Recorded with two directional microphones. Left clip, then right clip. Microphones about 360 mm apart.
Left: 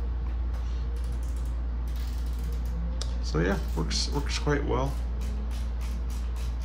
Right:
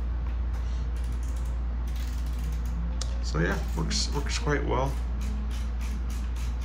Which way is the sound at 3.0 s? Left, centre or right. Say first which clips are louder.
Left 1 dB; centre.